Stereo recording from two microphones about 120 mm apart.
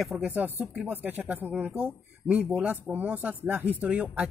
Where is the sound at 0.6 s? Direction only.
5° right (ahead or behind).